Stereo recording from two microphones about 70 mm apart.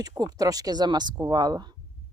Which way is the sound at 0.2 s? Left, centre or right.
Right.